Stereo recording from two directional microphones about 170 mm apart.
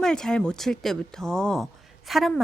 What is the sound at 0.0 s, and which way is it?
A woman's voice, 5° left (ahead or behind).